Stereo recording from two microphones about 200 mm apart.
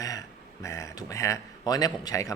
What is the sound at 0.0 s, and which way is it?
Speech, 15° left (ahead or behind).